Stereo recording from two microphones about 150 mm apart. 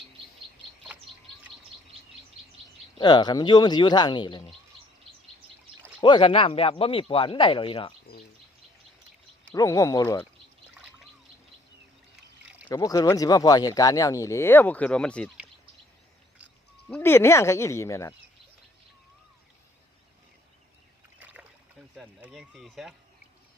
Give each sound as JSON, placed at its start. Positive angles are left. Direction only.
{"t": 3.0, "sound": "speech", "side_deg": 30}
{"t": 6.0, "sound": "speech", "side_deg": 35}
{"t": 9.6, "sound": "speech", "side_deg": 20}
{"t": 12.7, "sound": "speech", "side_deg": 25}
{"t": 16.9, "sound": "speech", "side_deg": 15}
{"t": 21.2, "sound": "rowboat", "side_deg": -10}
{"t": 21.9, "sound": "speech", "side_deg": -5}